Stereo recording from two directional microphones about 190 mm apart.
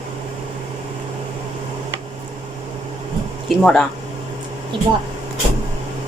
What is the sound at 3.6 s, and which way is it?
Speech, 5° left (ahead or behind).